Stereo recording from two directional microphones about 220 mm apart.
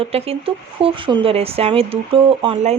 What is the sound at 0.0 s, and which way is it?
A woman's voice, 25° right (ahead or behind).